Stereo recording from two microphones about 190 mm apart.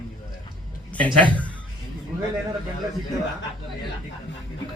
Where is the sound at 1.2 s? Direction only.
5° left (ahead or behind).